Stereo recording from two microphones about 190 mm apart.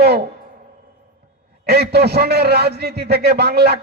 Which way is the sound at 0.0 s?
60° right (ahead or behind).